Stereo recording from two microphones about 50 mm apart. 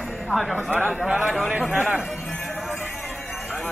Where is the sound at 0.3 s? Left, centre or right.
Centre.